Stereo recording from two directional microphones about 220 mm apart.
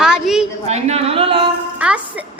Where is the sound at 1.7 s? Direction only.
5° right (ahead or behind).